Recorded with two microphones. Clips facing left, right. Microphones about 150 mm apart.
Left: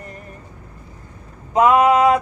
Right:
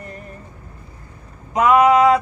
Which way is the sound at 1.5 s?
25° left (ahead or behind).